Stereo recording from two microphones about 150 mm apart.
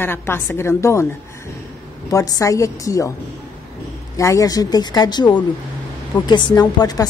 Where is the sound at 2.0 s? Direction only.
20° left (ahead or behind).